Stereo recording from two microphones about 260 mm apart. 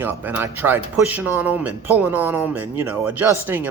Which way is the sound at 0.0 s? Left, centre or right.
Centre.